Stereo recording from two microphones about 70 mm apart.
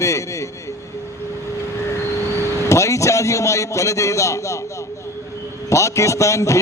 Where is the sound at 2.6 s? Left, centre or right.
Left.